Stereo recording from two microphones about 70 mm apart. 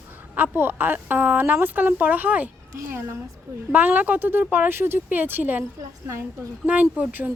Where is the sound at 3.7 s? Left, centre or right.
Right.